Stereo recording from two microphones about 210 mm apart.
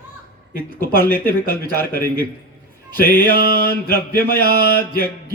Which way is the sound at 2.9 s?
40° left (ahead or behind).